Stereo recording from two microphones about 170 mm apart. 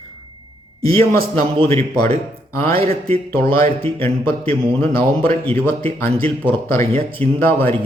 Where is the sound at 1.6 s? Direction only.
15° left (ahead or behind).